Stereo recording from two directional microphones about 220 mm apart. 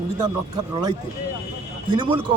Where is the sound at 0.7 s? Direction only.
20° right (ahead or behind).